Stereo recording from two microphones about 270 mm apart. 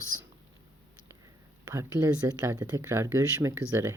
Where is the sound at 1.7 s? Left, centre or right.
Centre.